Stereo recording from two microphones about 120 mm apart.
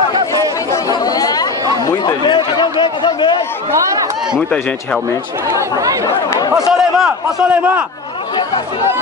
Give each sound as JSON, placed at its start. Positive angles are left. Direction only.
{"t": 1.0, "sound": "chatter", "side_deg": 30}
{"t": 1.9, "sound": "a sound", "side_deg": 35}
{"t": 5.5, "sound": "speech", "side_deg": -30}
{"t": 6.7, "sound": "a man's voice", "side_deg": -5}